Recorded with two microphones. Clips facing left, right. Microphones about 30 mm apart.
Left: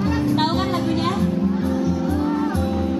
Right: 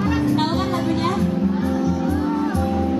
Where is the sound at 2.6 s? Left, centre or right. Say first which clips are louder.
Right 1 dB; centre.